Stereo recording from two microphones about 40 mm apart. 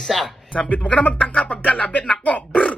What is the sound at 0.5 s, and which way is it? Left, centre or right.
Speech, centre.